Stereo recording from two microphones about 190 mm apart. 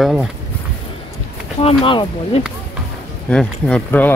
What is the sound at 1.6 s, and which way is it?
Speech, 30° left (ahead or behind).